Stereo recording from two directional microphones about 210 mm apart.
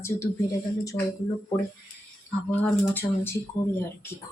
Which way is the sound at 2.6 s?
10° left (ahead or behind).